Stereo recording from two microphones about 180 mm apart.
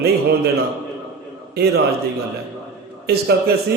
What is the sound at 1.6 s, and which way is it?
Speech, 60° right (ahead or behind).